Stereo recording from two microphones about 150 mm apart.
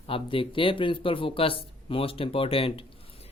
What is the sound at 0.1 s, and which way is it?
Speech, 35° left (ahead or behind).